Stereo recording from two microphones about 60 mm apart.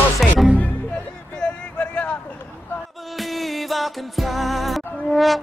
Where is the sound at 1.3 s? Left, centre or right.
Centre.